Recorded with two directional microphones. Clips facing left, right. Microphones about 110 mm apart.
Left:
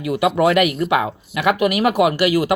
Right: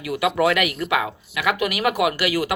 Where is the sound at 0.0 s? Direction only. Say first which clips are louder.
Left 4 dB; 25° left (ahead or behind).